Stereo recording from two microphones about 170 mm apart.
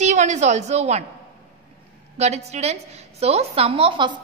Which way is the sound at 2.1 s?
40° right (ahead or behind).